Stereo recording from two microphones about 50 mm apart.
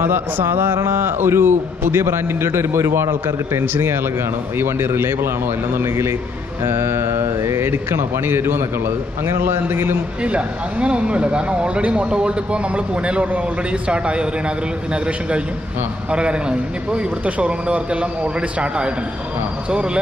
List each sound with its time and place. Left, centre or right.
0.0 s a man's voice: right
3.7 s a man's voice: right
10.2 s speech: right
16.1 s speech: right